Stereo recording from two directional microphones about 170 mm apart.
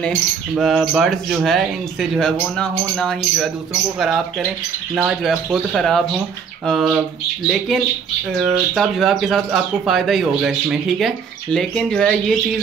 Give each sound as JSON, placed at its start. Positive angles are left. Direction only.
{"t": 0.6, "sound": "speech", "side_deg": 0}